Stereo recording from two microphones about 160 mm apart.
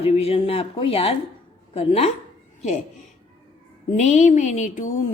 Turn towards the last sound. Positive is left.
turn(degrees=50)  # may be behind; listen again after turning